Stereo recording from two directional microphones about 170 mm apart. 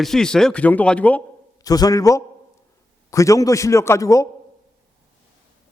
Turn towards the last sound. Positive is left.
turn(degrees=20)  # may be behind; listen again after turning